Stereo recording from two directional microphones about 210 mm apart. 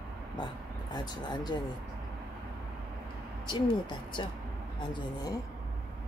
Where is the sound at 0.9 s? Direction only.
20° left (ahead or behind).